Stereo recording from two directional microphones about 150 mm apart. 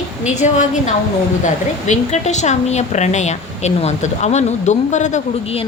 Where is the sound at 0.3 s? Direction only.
55° left (ahead or behind).